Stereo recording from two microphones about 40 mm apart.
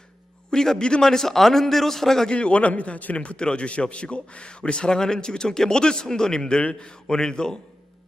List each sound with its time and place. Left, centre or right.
0.5 s a man's voice: centre
2.3 s a man's voice: left